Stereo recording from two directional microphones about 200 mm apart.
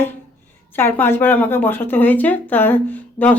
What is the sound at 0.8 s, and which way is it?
Speech, 10° left (ahead or behind).